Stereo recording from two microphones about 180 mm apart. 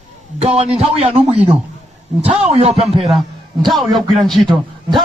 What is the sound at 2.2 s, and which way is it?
Speech, 5° right (ahead or behind).